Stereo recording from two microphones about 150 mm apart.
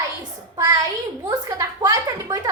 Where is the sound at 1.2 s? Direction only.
25° right (ahead or behind).